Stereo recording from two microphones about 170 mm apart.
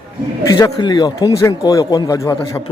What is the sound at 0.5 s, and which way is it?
Speech, 25° left (ahead or behind).